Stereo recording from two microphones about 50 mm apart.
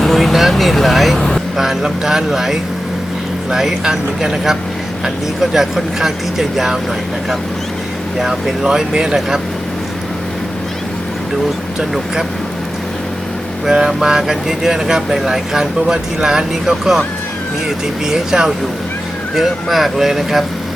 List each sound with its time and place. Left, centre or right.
0.0 s speech: centre
8.2 s speech: centre
13.7 s speech: centre
18.0 s speech: centre